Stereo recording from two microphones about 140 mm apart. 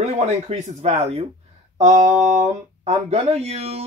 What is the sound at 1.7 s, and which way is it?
Speech, 60° right (ahead or behind).